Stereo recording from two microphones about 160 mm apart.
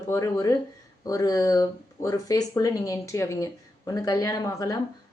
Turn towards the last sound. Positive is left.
turn(degrees=20)  # may be behind; listen again after turning